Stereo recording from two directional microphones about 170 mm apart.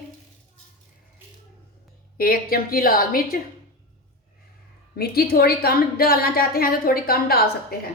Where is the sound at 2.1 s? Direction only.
60° left (ahead or behind).